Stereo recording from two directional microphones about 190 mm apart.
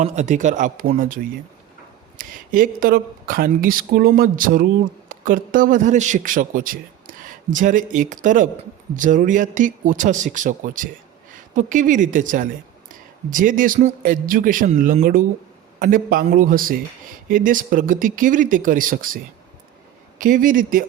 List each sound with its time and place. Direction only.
0.0 s speech: 40° right (ahead or behind)